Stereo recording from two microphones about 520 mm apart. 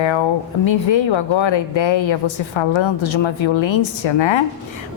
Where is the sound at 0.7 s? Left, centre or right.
Left.